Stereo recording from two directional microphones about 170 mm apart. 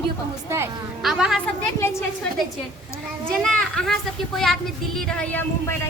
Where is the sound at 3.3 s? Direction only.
5° left (ahead or behind).